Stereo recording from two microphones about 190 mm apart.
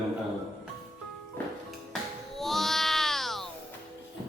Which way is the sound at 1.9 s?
Centre (ahead or behind).